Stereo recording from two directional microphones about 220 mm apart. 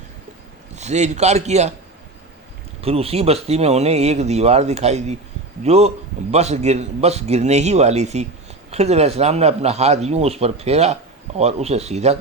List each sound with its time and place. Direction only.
0.8 s a man's voice: 30° right (ahead or behind)
2.8 s a man's voice: 25° right (ahead or behind)